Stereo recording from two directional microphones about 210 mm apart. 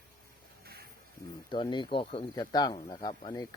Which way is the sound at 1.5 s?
20° left (ahead or behind).